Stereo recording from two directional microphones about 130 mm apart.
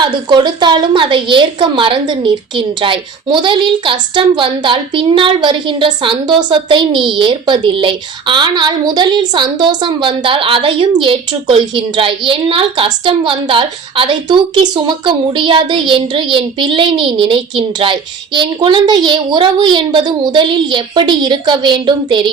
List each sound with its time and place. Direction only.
0.0 s a woman's voice: 35° right (ahead or behind)